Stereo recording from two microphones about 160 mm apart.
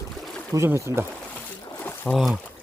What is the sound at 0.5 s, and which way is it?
Speech, 15° right (ahead or behind).